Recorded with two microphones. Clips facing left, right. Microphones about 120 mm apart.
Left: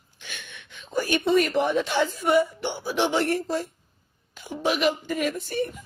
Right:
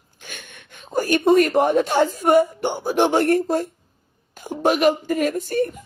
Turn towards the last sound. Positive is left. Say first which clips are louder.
# right 6 dB
turn(degrees=-45)  # may be behind; listen again after turning